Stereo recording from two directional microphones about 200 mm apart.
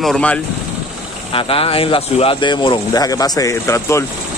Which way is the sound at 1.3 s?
25° left (ahead or behind).